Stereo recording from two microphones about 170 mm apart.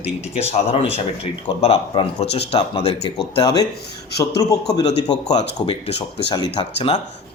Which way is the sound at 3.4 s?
20° left (ahead or behind).